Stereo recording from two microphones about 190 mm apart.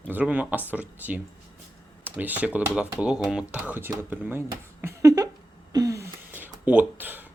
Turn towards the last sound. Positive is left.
turn(degrees=-10)  # may be behind; listen again after turning